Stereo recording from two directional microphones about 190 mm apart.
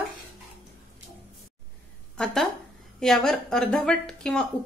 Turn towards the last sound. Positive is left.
turn(degrees=5)  # may be behind; listen again after turning